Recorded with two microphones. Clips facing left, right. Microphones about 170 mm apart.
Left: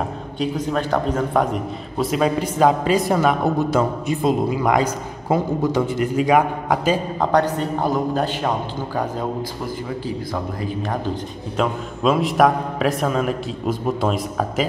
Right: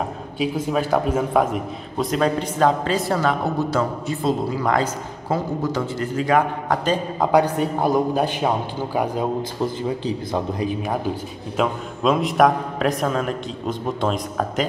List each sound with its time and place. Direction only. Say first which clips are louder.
0.4 s a man's voice: even; 5° right (ahead or behind); by 7.0 s 10° left (ahead or behind)
7.2 s a man's voice: right 1 dB; 10° right (ahead or behind)
11.5 s a man's voice: even; centre (ahead or behind)